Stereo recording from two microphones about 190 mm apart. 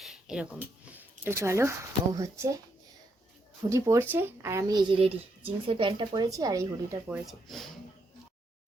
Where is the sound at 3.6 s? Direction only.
15° right (ahead or behind).